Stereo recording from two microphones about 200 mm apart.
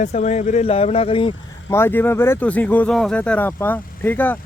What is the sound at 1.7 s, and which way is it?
Speech, 10° left (ahead or behind).